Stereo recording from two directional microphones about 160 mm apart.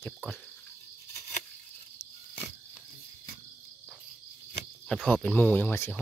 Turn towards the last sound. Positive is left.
turn(degrees=15)  # may be behind; listen again after turning